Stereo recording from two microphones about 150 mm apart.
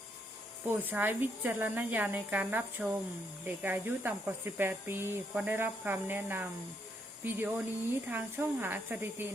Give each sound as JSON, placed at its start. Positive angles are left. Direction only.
{"t": 0.6, "sound": "speech", "side_deg": -10}